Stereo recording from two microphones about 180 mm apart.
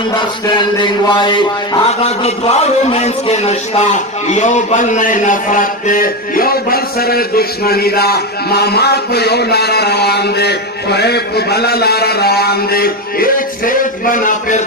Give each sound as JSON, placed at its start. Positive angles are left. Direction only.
{"t": 0.7, "sound": "a man's voice", "side_deg": 25}